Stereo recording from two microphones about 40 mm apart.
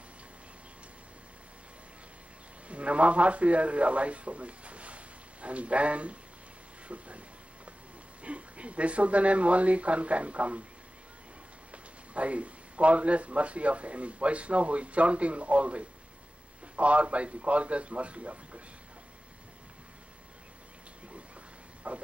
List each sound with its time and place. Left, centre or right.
2.7 s a man's voice: right
11.7 s speech: right
21.8 s vehicle: right